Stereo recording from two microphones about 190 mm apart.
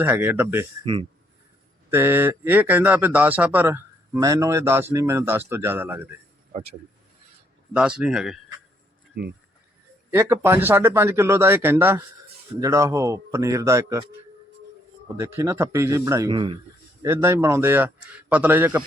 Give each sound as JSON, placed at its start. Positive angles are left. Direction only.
{"t": 0.0, "sound": "a man's voice", "side_deg": -10}
{"t": 1.9, "sound": "a man's voice", "side_deg": -10}
{"t": 6.5, "sound": "speech", "side_deg": -35}
{"t": 7.7, "sound": "speech", "side_deg": -5}
{"t": 9.2, "sound": "speech", "side_deg": -55}
{"t": 10.1, "sound": "a man's voice", "side_deg": -15}
{"t": 15.2, "sound": "a man's voice", "side_deg": -15}
{"t": 17.0, "sound": "a man's voice", "side_deg": -15}